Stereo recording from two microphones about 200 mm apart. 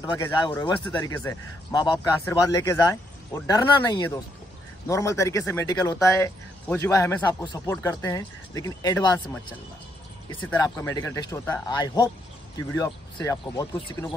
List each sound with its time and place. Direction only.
0.0 s speech: 15° left (ahead or behind)
10.3 s speech: 15° left (ahead or behind)